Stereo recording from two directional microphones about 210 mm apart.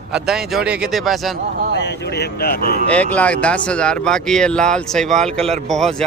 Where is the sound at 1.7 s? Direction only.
55° left (ahead or behind).